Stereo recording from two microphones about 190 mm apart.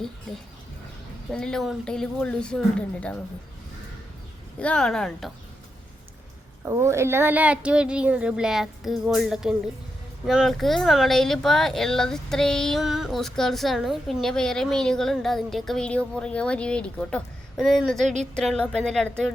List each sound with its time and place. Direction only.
0.3 s speech: centre (ahead or behind)
4.6 s speech: 5° left (ahead or behind)
6.7 s speech: 15° right (ahead or behind); by 19.3 s 5° left (ahead or behind)